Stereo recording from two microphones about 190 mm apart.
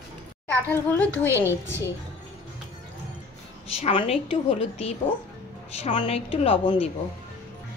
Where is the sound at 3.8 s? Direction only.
30° left (ahead or behind).